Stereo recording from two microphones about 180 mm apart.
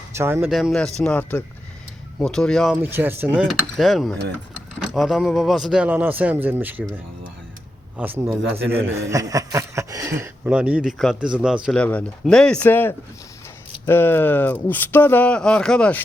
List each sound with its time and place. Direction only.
0.2 s speech: 15° right (ahead or behind)
0.4 s speech: centre (ahead or behind)
2.8 s speech: 10° right (ahead or behind)
3.4 s speech: centre (ahead or behind)
8.4 s a man's voice: 80° right
9.0 s speech: 15° right (ahead or behind)
10.5 s speech: 5° right (ahead or behind)
11.7 s speech: 5° left (ahead or behind)